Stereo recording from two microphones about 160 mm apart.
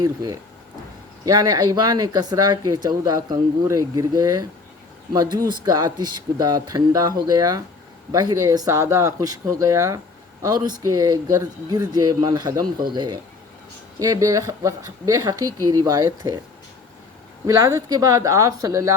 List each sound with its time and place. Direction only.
0.0 s speech: 20° right (ahead or behind)
17.4 s speech: 20° right (ahead or behind)